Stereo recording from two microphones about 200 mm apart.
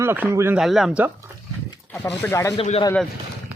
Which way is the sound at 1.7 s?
15° left (ahead or behind).